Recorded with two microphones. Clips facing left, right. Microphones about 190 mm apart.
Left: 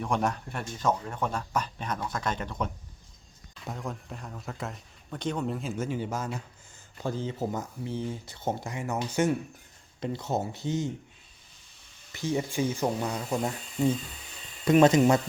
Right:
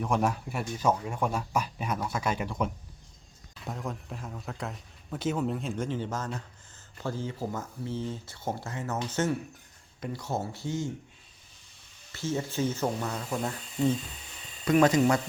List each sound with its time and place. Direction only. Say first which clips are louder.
0.0 s a man's voice: right 1 dB; 5° right (ahead or behind); by 9.3 s 10° left (ahead or behind)
10.0 s speech: left 3 dB; 25° left (ahead or behind)
12.1 s speech: left 2 dB; 15° left (ahead or behind)
14.7 s speech: left 3 dB; 25° left (ahead or behind)